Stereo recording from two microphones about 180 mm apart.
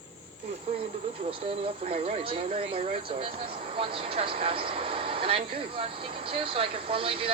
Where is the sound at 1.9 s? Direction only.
30° right (ahead or behind).